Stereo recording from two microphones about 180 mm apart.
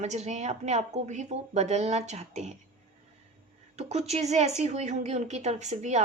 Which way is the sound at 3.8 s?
35° right (ahead or behind).